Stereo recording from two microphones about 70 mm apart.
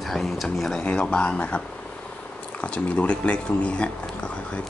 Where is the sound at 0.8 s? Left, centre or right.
Centre.